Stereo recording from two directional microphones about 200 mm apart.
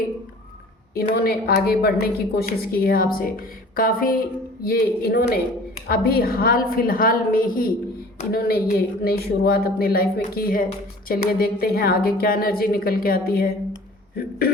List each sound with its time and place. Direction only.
1.1 s a woman's voice: 50° left (ahead or behind)